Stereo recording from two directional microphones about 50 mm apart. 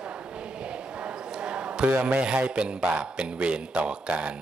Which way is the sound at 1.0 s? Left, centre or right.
Centre.